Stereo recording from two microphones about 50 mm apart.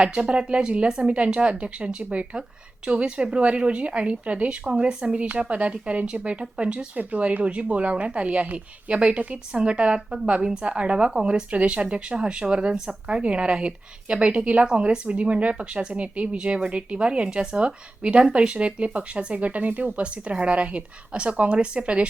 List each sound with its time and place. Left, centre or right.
0.0 s speech: right